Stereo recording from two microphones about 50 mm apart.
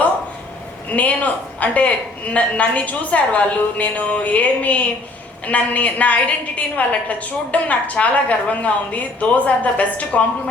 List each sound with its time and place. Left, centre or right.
0.9 s a woman's voice: left